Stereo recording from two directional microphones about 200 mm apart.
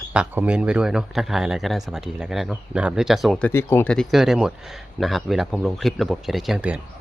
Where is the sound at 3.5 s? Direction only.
10° left (ahead or behind).